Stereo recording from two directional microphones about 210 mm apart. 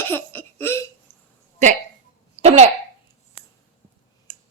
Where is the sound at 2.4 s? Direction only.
30° right (ahead or behind).